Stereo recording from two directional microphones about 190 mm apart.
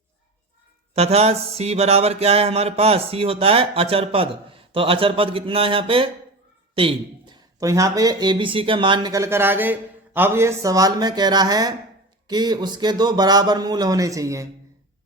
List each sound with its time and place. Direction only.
0.9 s music: 35° right (ahead or behind)
1.5 s speech: 35° right (ahead or behind); by 14.4 s 15° right (ahead or behind)